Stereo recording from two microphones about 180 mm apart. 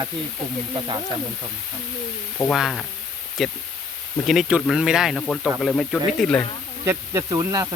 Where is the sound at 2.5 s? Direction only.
Centre (ahead or behind).